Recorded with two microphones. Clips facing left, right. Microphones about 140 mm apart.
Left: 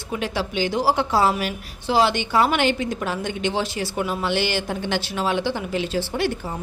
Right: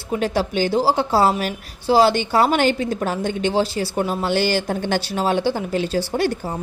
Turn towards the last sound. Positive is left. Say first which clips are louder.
# right 3 dB
turn(degrees=-40)  # may be behind; listen again after turning